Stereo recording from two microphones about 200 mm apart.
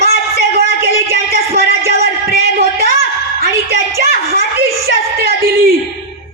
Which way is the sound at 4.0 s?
50° right (ahead or behind).